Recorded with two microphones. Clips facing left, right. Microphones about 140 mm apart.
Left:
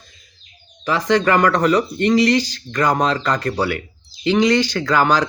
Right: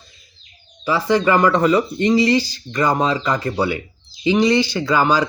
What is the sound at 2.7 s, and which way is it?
Speech, 5° right (ahead or behind).